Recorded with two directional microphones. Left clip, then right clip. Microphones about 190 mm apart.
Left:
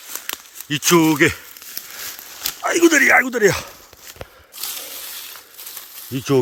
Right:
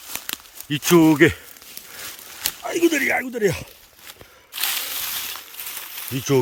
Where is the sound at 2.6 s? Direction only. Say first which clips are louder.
Left 6 dB; 5° right (ahead or behind).